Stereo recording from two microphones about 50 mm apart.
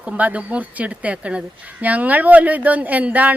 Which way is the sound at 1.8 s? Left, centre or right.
Right.